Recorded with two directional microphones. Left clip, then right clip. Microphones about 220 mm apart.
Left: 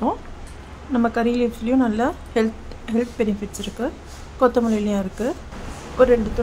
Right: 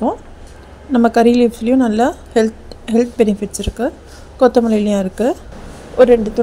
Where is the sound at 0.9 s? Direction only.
25° right (ahead or behind).